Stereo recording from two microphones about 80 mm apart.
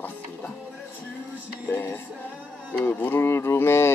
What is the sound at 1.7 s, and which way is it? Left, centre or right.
Music, left.